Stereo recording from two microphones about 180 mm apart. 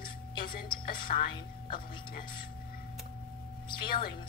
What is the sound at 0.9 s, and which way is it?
Speech, 55° left (ahead or behind).